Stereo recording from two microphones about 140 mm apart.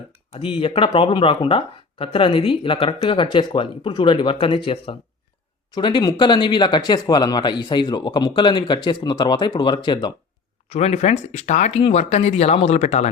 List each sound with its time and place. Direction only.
0.1 s speech: 40° left (ahead or behind)
10.7 s speech: 50° left (ahead or behind)